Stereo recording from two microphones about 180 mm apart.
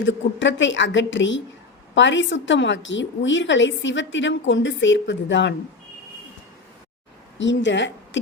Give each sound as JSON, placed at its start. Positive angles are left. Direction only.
{"t": 0.0, "sound": "a woman's voice", "side_deg": 90}
{"t": 7.3, "sound": "speech", "side_deg": 90}